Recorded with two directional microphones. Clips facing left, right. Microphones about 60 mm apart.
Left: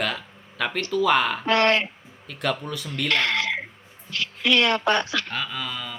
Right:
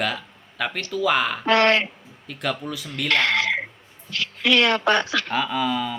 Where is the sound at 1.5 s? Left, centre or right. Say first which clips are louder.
Right 3 dB; right.